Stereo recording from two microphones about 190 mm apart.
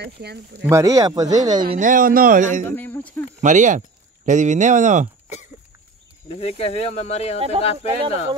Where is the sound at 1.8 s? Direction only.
45° right (ahead or behind).